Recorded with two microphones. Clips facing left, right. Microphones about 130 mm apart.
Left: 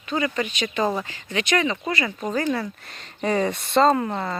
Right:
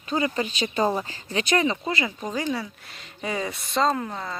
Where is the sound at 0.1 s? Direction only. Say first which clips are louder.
Even; 30° right (ahead or behind).